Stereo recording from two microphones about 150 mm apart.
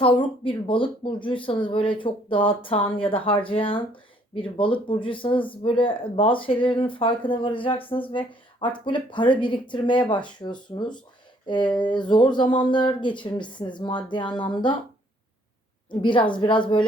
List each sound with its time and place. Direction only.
0.0 s speech: 35° left (ahead or behind)
15.9 s speech: 35° left (ahead or behind)